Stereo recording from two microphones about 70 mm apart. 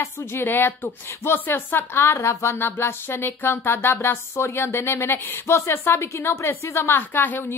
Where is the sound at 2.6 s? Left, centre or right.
Left.